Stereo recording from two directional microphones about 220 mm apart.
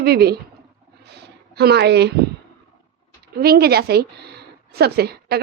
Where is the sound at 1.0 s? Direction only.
50° right (ahead or behind).